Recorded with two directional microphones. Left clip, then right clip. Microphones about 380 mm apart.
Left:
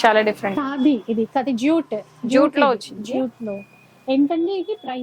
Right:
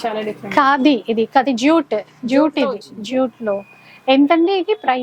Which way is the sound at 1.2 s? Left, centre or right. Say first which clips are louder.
Right 6 dB; centre.